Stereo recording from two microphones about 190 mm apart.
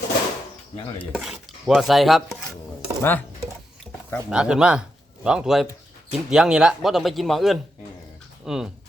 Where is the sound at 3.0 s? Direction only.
10° left (ahead or behind).